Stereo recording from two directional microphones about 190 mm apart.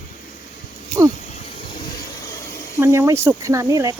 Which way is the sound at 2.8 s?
15° right (ahead or behind).